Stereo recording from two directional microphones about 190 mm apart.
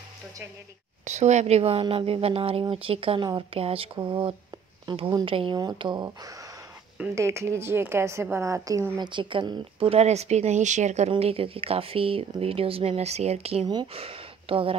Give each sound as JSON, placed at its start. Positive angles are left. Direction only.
{"t": 1.0, "sound": "a woman's voice", "side_deg": -35}
{"t": 9.1, "sound": "speech", "side_deg": -25}